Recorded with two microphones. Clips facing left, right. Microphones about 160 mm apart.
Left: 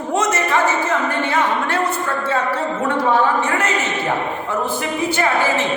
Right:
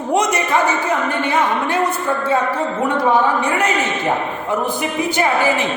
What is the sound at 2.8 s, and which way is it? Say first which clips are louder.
Speech: right 1 dB; 15° right (ahead or behind).